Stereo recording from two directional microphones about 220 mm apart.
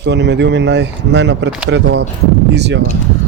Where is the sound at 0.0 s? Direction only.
50° right (ahead or behind).